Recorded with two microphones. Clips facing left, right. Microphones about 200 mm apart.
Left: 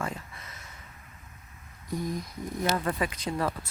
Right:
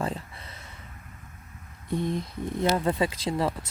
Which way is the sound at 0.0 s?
30° right (ahead or behind).